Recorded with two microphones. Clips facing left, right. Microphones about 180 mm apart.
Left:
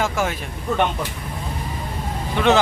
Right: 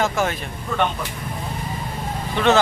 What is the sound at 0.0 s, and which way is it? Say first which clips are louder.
Speech: right 1 dB; 10° left (ahead or behind).